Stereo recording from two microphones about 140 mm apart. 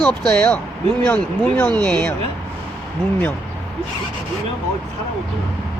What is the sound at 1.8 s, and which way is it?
Speech, 5° left (ahead or behind).